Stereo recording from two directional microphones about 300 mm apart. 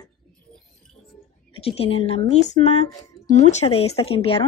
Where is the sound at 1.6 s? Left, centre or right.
Centre.